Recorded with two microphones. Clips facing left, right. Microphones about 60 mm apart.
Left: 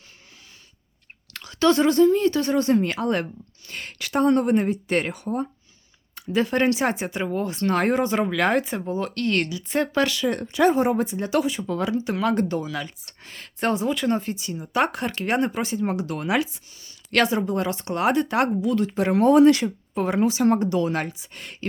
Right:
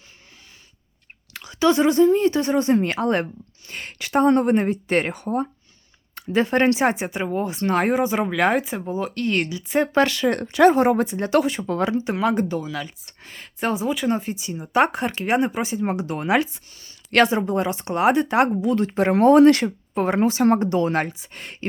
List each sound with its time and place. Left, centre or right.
1.3 s a woman's voice: centre
7.9 s speech: centre
9.9 s speech: right; by 12.5 s centre
12.5 s speech: centre; by 16.4 s right
16.4 s speech: right